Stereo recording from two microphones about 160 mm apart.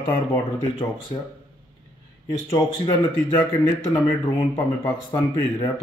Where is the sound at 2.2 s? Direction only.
20° left (ahead or behind).